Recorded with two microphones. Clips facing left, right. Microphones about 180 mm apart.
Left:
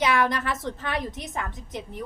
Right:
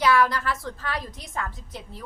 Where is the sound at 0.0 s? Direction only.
20° left (ahead or behind).